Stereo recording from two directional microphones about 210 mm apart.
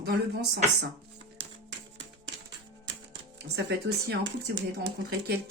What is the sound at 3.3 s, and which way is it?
Speech, 50° right (ahead or behind).